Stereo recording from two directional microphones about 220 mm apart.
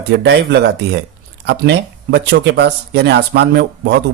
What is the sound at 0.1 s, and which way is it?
Speech, 50° right (ahead or behind).